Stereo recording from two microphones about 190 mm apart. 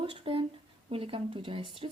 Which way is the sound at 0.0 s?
25° right (ahead or behind).